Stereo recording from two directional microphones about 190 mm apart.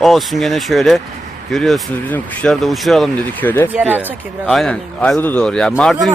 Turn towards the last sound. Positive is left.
turn(degrees=5)  # may be behind; listen again after turning